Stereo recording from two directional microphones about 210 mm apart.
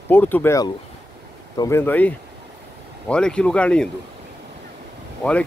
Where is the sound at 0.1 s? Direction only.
10° left (ahead or behind).